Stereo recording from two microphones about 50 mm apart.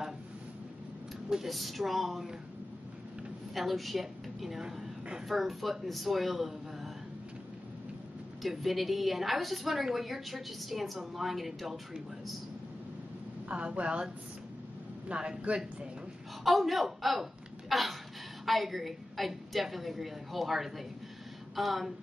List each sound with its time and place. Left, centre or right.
1.3 s a woman's voice: centre
3.5 s a woman's voice: centre
8.4 s a woman's voice: centre
13.5 s speech: right
15.0 s speech: right
16.4 s a woman's voice: centre